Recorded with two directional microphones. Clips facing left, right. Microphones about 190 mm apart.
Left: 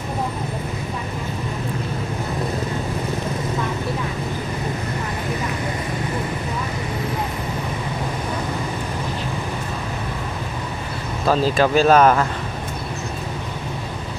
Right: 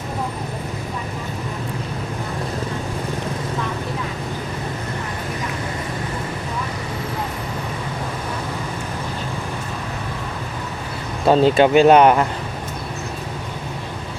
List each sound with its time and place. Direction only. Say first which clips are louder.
11.3 s speech: right 4 dB; 25° right (ahead or behind)